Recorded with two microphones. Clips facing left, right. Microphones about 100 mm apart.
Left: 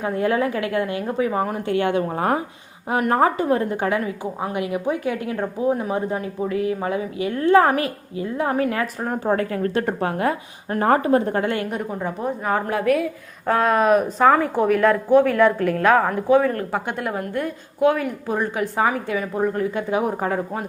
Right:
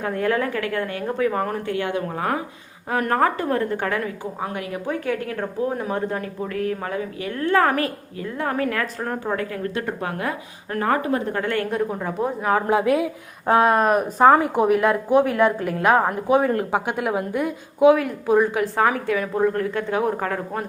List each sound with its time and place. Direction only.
0.0 s speech: 15° left (ahead or behind)
1.8 s a woman's voice: 25° left (ahead or behind)
2.9 s speech: 15° left (ahead or behind)
9.2 s a woman's voice: 40° left (ahead or behind)
11.7 s a woman's voice: centre (ahead or behind)
12.6 s a woman's voice: 20° right (ahead or behind)
13.7 s a woman's voice: centre (ahead or behind)
14.3 s a woman's voice: 15° right (ahead or behind)
16.7 s a woman's voice: 10° right (ahead or behind)
17.9 s a woman's voice: centre (ahead or behind)